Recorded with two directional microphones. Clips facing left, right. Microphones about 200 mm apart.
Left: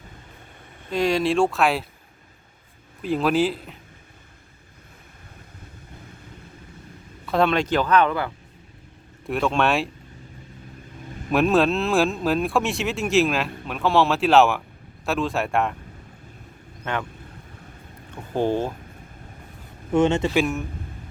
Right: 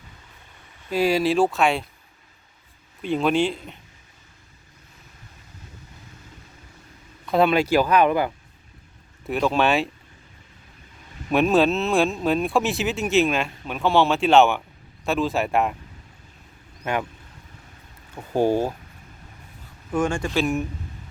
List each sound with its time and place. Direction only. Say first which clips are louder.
0.9 s speech: right 1 dB; 5° right (ahead or behind)
3.0 s speech: even; centre (ahead or behind)
7.3 s speech: right 2 dB; 5° right (ahead or behind)
9.2 s speech: right 1 dB; centre (ahead or behind)
11.3 s speech: even; centre (ahead or behind)
16.8 s speech: right 2 dB; 10° right (ahead or behind)
18.3 s speech: right 2 dB; 10° right (ahead or behind)
19.9 s speech: left 4 dB; 25° left (ahead or behind)
20.2 s speech: left 2 dB; 10° left (ahead or behind)